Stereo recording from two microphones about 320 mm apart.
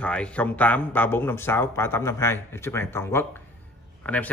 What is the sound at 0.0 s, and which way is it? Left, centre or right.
Speech, centre.